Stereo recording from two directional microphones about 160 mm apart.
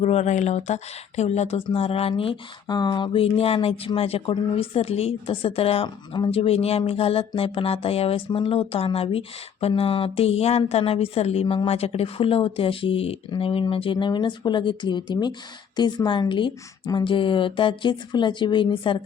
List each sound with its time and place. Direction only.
0.0 s speech: 45° left (ahead or behind)